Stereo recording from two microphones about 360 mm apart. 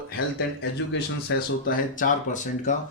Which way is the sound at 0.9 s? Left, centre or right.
Left.